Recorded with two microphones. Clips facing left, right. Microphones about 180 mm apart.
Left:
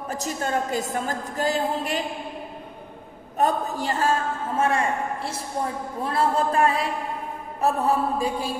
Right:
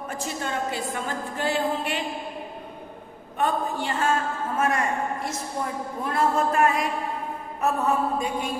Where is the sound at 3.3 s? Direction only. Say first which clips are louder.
Left 2 dB; 40° left (ahead or behind).